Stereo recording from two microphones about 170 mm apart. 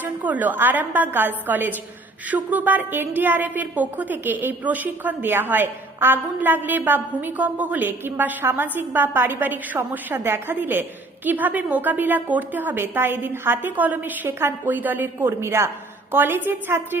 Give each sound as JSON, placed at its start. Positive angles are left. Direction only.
{"t": 0.0, "sound": "a woman's voice", "side_deg": -10}